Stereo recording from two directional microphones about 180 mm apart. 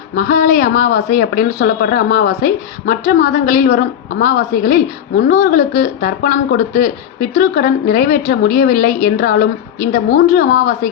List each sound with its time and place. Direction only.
0.2 s speech: 50° left (ahead or behind)